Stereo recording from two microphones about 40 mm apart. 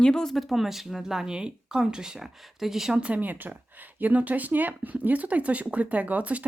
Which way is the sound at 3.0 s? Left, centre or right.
Right.